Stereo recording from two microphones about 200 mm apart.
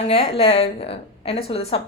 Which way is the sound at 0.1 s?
30° left (ahead or behind).